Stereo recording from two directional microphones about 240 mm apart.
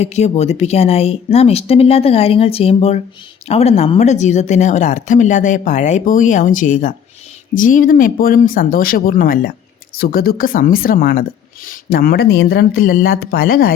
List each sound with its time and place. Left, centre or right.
0.0 s speech: left